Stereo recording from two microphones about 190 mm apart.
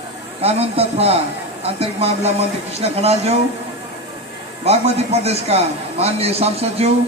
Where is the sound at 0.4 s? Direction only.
30° right (ahead or behind).